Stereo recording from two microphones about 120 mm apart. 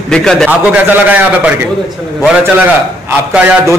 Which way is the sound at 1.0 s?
15° right (ahead or behind).